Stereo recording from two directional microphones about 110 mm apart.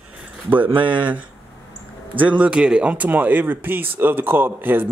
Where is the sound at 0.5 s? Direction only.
15° right (ahead or behind).